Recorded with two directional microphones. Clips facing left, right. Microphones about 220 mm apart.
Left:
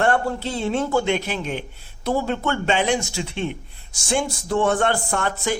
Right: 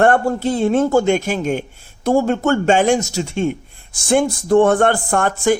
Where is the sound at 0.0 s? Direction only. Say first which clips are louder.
Right 6 dB; 50° right (ahead or behind).